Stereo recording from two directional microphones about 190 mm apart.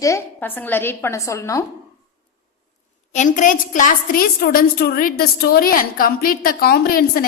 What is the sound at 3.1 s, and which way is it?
A woman's voice, 40° left (ahead or behind).